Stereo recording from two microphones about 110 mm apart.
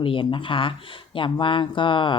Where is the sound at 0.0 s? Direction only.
50° left (ahead or behind).